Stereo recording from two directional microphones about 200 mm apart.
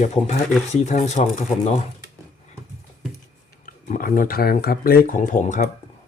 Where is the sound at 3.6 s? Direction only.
45° left (ahead or behind).